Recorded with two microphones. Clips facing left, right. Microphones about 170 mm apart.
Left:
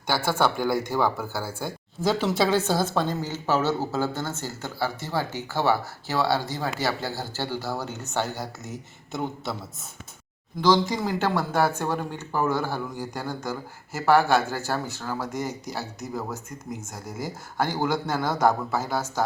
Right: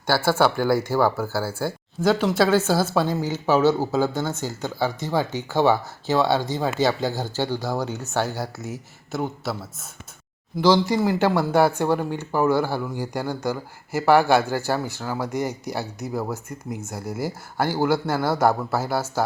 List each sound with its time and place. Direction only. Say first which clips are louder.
0.1 s a man's voice: right 4 dB; 5° right (ahead or behind)
16.5 s speech: right 3 dB; 65° right (ahead or behind)
16.8 s speech: right 5 dB; 10° right (ahead or behind)